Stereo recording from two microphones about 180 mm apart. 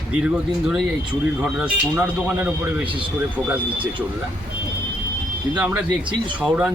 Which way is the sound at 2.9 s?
30° right (ahead or behind).